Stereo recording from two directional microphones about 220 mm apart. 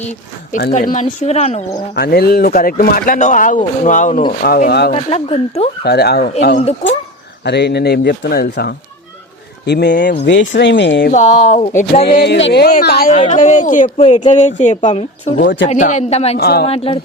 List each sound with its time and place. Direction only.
0.5 s speech: 35° left (ahead or behind)
2.0 s speech: 45° left (ahead or behind)
4.9 s speech: 25° left (ahead or behind)
5.8 s speech: 45° left (ahead or behind)
7.4 s speech: 50° left (ahead or behind)
11.1 s speech: 35° left (ahead or behind)
12.1 s speech: 50° left (ahead or behind); by 16.4 s 30° left (ahead or behind)
16.4 s speech: 45° left (ahead or behind)
16.6 s speech: 25° left (ahead or behind)